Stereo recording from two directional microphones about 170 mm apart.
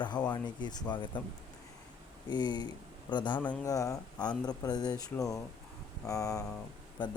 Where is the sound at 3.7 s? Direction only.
20° left (ahead or behind).